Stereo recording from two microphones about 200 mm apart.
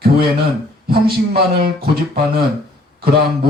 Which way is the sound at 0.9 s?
50° right (ahead or behind).